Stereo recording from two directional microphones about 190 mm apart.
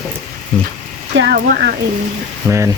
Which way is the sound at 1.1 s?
90° right.